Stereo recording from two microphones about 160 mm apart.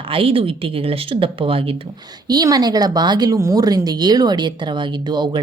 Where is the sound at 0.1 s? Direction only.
35° right (ahead or behind).